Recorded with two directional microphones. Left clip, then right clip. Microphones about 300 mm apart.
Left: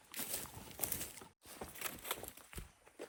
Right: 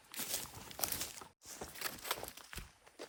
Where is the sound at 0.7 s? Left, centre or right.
Right.